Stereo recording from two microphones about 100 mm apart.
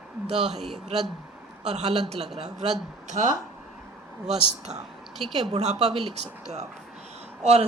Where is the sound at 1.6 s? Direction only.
90° right.